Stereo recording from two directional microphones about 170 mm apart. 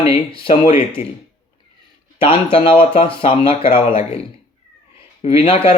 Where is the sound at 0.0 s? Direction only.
35° left (ahead or behind).